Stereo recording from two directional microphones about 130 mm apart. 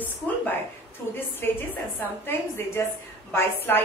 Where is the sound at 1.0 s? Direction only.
15° left (ahead or behind).